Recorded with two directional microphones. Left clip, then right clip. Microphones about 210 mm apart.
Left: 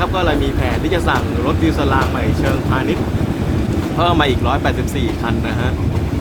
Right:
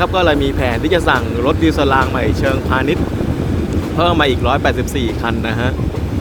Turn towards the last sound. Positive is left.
turn(degrees=-25)  # may be behind; listen again after turning